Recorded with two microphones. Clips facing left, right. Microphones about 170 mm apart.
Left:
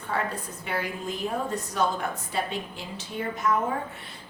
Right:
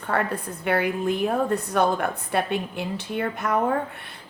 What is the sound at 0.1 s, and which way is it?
Speech, 60° right (ahead or behind).